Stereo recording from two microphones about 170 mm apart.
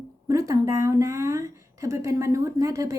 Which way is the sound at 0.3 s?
20° right (ahead or behind).